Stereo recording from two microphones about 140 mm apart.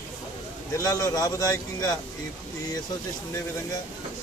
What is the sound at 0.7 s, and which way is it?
A man's voice, 25° left (ahead or behind).